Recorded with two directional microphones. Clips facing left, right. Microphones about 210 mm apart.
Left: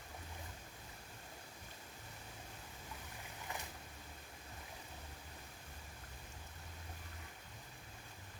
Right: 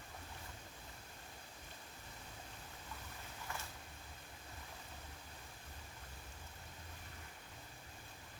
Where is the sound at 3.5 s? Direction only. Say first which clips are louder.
Left 1 dB; 15° left (ahead or behind).